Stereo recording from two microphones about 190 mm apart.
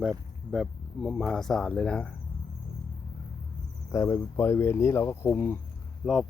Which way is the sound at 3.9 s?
15° left (ahead or behind).